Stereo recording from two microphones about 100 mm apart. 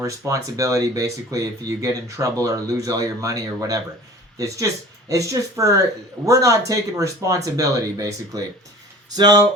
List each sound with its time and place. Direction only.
0.0 s speech: 35° right (ahead or behind)